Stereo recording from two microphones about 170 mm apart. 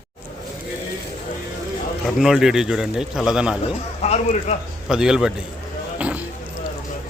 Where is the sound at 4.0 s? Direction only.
40° left (ahead or behind).